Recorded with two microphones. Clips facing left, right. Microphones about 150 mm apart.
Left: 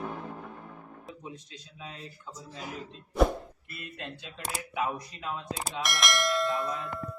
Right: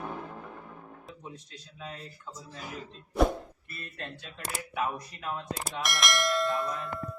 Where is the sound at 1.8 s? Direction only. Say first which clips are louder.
Right 2 dB; 15° left (ahead or behind).